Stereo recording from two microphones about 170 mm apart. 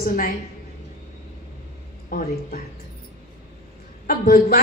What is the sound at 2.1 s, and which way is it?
Speech, 55° left (ahead or behind).